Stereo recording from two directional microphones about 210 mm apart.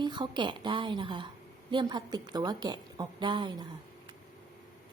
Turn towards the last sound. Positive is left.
turn(degrees=-20)  # may be behind; listen again after turning